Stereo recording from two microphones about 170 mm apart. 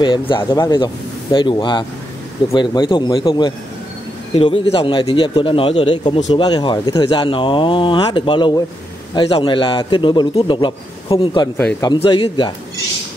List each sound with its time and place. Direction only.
0.0 s speech: 25° left (ahead or behind)